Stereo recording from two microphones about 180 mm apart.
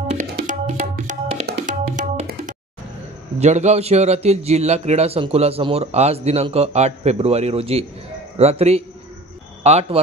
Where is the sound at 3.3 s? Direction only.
40° right (ahead or behind).